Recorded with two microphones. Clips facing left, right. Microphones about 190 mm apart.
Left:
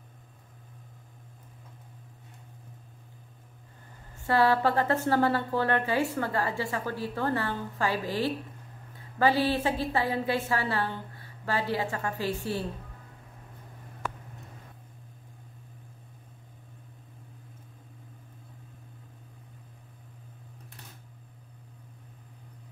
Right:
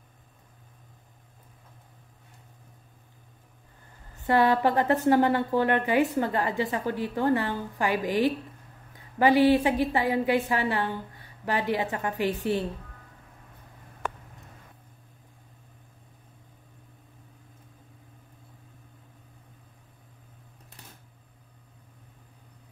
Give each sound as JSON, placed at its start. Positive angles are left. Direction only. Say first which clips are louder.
{"t": 4.3, "sound": "a woman's voice", "louder": "right 2 dB", "side_deg": -20}